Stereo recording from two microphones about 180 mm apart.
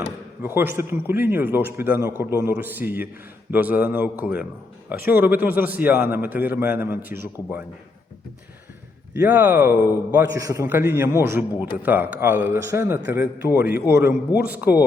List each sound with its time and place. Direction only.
0.4 s a man's voice: 10° right (ahead or behind)
9.1 s a man's voice: 10° right (ahead or behind)
13.6 s a man's voice: 55° left (ahead or behind)
14.3 s a man's voice: 10° right (ahead or behind)